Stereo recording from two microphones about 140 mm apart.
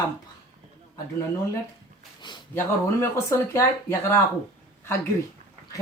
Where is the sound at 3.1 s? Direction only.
20° left (ahead or behind).